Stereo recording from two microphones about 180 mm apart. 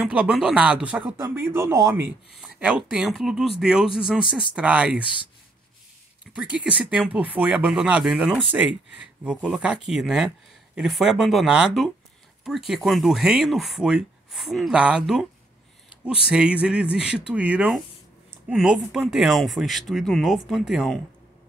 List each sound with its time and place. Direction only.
0.0 s speech: 5° right (ahead or behind)
2.3 s speech: centre (ahead or behind)
6.3 s speech: 5° right (ahead or behind)